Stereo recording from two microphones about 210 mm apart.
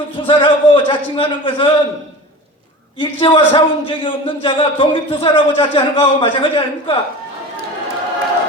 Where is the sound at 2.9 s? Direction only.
25° left (ahead or behind).